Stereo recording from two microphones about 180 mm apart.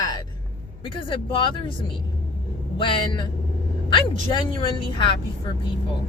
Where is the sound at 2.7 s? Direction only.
25° left (ahead or behind).